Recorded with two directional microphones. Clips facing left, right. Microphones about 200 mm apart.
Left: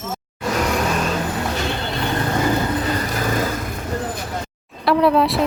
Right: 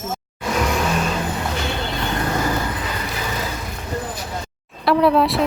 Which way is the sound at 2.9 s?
45° left (ahead or behind).